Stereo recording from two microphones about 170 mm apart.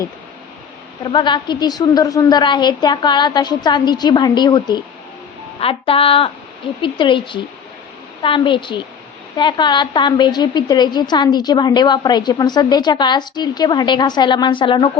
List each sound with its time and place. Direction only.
1.0 s a woman's voice: 25° left (ahead or behind)